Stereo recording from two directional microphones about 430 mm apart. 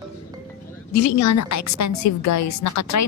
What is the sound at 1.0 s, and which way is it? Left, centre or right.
A woman's voice, left.